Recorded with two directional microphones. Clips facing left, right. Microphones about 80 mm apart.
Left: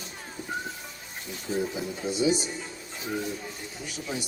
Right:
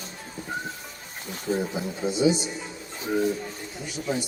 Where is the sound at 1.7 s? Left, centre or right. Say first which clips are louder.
Right 3 dB; right.